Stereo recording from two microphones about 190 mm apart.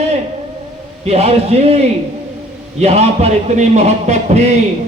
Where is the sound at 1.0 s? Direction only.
35° right (ahead or behind).